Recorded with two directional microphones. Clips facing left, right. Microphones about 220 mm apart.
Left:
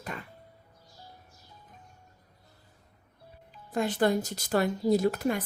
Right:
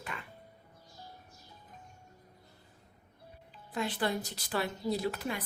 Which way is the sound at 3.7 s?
45° left (ahead or behind).